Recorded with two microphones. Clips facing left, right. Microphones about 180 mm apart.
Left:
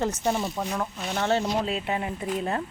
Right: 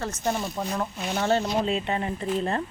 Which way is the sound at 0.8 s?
5° right (ahead or behind).